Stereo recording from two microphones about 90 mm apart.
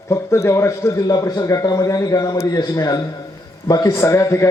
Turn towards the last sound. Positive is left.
turn(degrees=35)  # may be behind; listen again after turning